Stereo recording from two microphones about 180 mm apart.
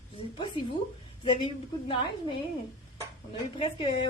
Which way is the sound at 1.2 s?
30° left (ahead or behind).